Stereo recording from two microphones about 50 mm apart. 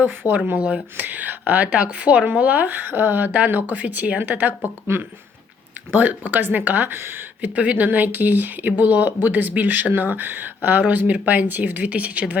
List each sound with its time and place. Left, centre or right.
0.0 s speech: right
0.5 s speech: right
5.9 s speech: right
7.5 s speech: right